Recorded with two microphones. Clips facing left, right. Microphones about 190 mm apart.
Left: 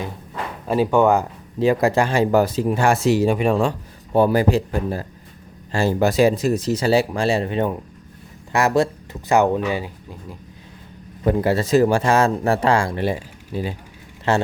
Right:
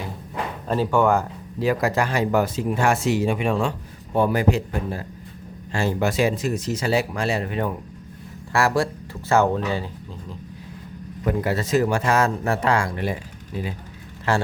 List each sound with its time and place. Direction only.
0.7 s speech: 15° left (ahead or behind)
11.2 s speech: 30° left (ahead or behind)